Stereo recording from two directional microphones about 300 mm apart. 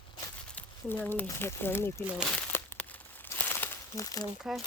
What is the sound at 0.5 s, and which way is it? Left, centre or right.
Speech, centre.